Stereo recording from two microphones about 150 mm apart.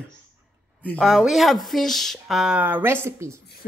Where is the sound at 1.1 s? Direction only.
Centre (ahead or behind).